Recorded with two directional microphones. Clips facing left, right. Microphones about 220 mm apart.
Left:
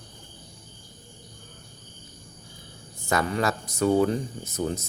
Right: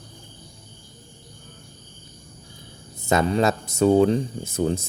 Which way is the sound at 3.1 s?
25° right (ahead or behind).